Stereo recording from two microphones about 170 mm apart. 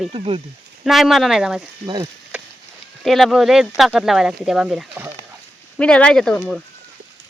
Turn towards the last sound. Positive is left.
turn(degrees=5)  # may be behind; listen again after turning